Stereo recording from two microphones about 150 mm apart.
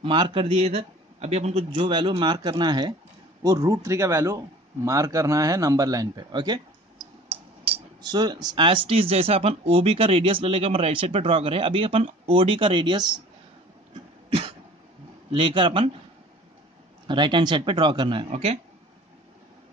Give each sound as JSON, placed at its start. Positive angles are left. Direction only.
{"t": 0.0, "sound": "a man's voice", "side_deg": -30}
{"t": 1.8, "sound": "a man's voice", "side_deg": -30}
{"t": 7.2, "sound": "tick", "side_deg": -40}
{"t": 8.0, "sound": "speech", "side_deg": -25}
{"t": 15.3, "sound": "speech", "side_deg": -35}
{"t": 17.1, "sound": "speech", "side_deg": -30}
{"t": 18.3, "sound": "a man's voice", "side_deg": -45}